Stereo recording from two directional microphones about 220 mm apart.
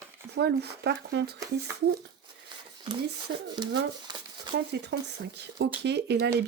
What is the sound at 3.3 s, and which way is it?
Speech, 50° right (ahead or behind).